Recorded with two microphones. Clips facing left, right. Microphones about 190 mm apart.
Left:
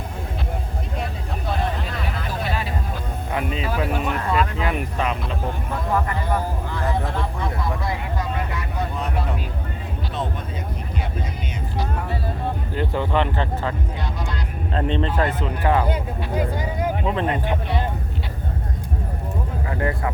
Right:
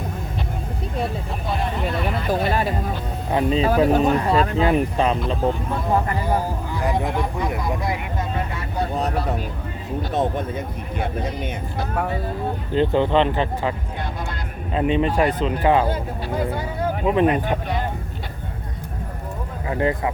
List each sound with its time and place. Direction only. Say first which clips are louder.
2.4 s music: right 6 dB; 45° right (ahead or behind)
3.3 s speech: right 7 dB; 30° right (ahead or behind)
6.7 s speech: right 3 dB; 15° right (ahead or behind)
8.5 s vehicle: right 3 dB; 35° right (ahead or behind)
10.1 s speech: right 7 dB; 50° right (ahead or behind)
12.7 s speech: right 6 dB; 25° right (ahead or behind)
17.1 s speech: right 9 dB; 15° right (ahead or behind)
19.7 s speech: right 4 dB; 20° right (ahead or behind)